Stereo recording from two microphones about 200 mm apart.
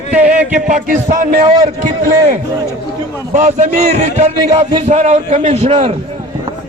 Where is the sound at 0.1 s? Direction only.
35° right (ahead or behind).